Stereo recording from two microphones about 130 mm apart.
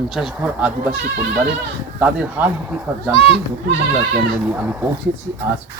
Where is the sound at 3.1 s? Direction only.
50° left (ahead or behind).